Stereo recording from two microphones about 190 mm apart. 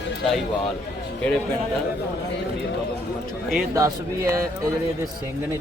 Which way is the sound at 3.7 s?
15° right (ahead or behind).